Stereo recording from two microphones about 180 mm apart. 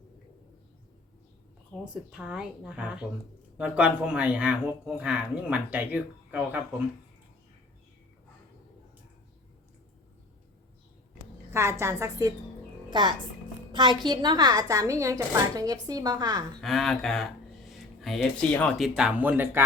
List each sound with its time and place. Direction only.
1.8 s speech: 5° right (ahead or behind)
11.5 s a woman's voice: 15° right (ahead or behind)
16.6 s speech: centre (ahead or behind)
18.9 s speech: 5° right (ahead or behind)